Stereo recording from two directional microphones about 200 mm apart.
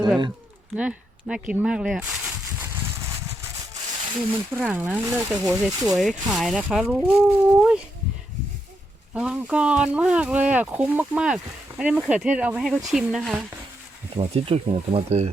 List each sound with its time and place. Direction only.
0.8 s speech: 5° right (ahead or behind)
4.3 s speech: 10° right (ahead or behind)
5.6 s speech: centre (ahead or behind)
9.1 s speech: 5° right (ahead or behind)
14.2 s speech: 30° right (ahead or behind)